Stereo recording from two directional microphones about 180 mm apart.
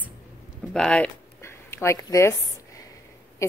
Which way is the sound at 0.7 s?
5° left (ahead or behind).